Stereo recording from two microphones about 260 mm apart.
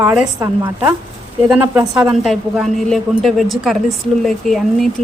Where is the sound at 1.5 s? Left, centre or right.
Centre.